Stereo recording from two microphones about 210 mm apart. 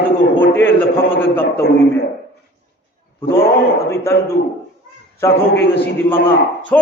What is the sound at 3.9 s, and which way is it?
Speech, 15° left (ahead or behind).